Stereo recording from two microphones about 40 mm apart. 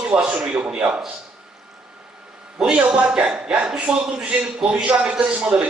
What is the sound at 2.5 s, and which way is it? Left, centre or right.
A man's voice, right.